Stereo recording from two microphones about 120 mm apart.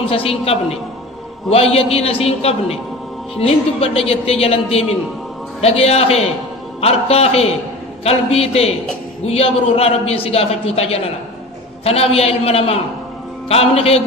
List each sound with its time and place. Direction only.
0.0 s a woman's voice: 50° left (ahead or behind)